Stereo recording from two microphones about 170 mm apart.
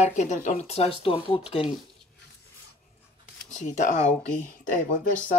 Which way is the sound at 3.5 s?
45° left (ahead or behind).